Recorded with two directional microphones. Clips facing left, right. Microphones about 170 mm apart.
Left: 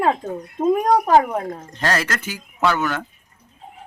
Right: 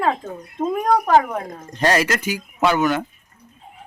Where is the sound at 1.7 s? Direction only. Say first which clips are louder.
Right 5 dB; 15° right (ahead or behind).